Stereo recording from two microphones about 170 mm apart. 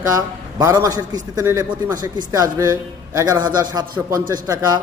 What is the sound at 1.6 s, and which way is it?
Speech, 10° right (ahead or behind).